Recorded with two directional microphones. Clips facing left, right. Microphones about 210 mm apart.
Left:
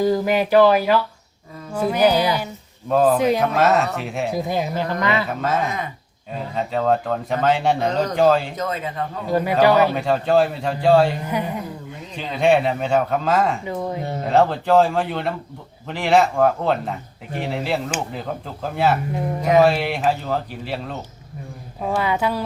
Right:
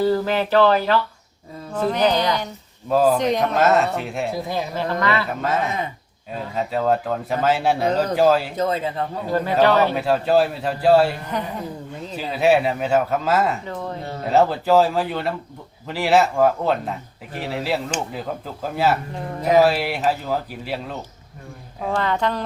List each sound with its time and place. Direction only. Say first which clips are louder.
0.0 s speech: left 1 dB; 15° left (ahead or behind)
4.4 s speech: left 2 dB; 20° left (ahead or behind)
5.3 s speech: even; centre (ahead or behind)
8.5 s a man's voice: right 3 dB; 30° right (ahead or behind)
9.3 s speech: left 1 dB; 10° left (ahead or behind)
9.9 s speech: even; 5° right (ahead or behind)
11.3 s speech: left 2 dB; 10° left (ahead or behind)
12.1 s speech: even; 5° right (ahead or behind)
13.7 s speech: left 4 dB; 10° left (ahead or behind)
14.3 s speech: even; 5° right (ahead or behind)